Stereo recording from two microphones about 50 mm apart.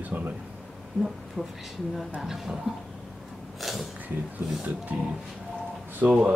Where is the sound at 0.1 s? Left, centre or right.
Right.